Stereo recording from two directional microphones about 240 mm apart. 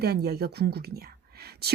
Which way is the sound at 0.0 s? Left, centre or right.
Right.